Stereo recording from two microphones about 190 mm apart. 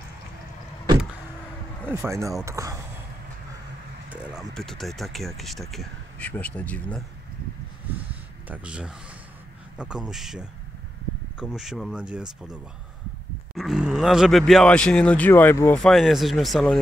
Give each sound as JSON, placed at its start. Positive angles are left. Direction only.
{"t": 1.9, "sound": "speech", "side_deg": -15}
{"t": 4.1, "sound": "speech", "side_deg": -5}
{"t": 8.5, "sound": "speech", "side_deg": -5}
{"t": 15.8, "sound": "speech", "side_deg": 0}